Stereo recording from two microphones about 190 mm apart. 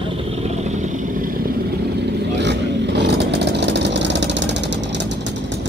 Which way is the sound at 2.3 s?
65° right (ahead or behind).